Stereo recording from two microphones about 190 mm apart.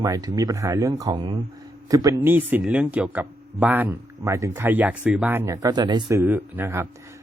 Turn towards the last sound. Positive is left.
turn(degrees=-10)  # may be behind; listen again after turning